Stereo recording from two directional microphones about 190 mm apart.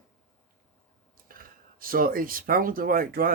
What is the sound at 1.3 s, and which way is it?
Speech, 50° right (ahead or behind).